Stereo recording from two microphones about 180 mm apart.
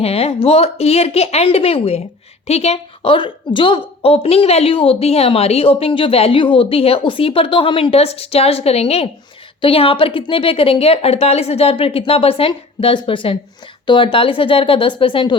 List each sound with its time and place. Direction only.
0.0 s a woman's voice: 35° left (ahead or behind)